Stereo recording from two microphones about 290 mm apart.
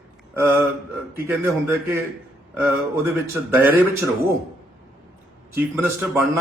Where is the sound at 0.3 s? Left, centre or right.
Centre.